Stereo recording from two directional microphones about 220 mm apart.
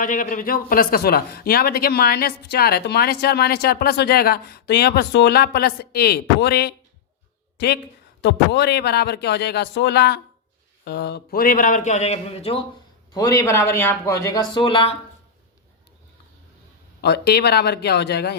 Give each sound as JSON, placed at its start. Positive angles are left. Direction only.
{"t": 0.0, "sound": "a man's voice", "side_deg": 35}
{"t": 8.2, "sound": "a man's voice", "side_deg": 50}
{"t": 13.1, "sound": "speech", "side_deg": 15}
{"t": 17.0, "sound": "a man's voice", "side_deg": 50}